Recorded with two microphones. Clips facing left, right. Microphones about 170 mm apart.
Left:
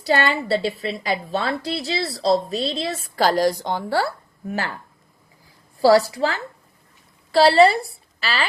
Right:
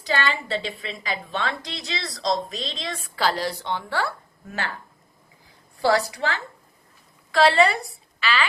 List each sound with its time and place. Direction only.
0.0 s a woman's voice: 40° left (ahead or behind)
5.8 s a woman's voice: 30° left (ahead or behind)